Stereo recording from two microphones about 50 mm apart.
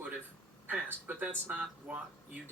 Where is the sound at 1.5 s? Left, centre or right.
Right.